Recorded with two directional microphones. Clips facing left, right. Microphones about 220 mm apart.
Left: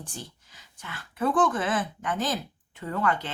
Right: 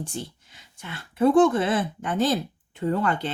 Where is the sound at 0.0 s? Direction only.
25° right (ahead or behind).